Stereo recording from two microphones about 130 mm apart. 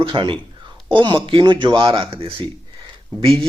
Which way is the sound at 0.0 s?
40° right (ahead or behind).